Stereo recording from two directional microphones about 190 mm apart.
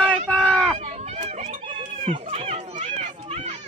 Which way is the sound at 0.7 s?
35° right (ahead or behind).